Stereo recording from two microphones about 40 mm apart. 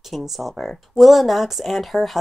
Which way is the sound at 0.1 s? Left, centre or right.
Centre.